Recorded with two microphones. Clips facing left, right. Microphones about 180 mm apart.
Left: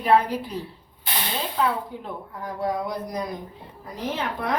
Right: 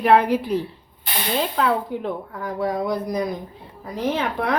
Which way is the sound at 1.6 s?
70° right (ahead or behind).